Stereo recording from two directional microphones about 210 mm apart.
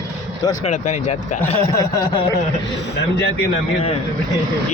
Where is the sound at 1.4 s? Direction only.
15° left (ahead or behind).